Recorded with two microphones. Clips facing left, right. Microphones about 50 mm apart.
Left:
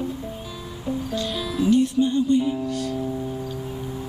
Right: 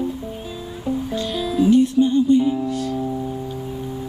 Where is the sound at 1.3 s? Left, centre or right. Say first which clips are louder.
Right 4 dB; centre.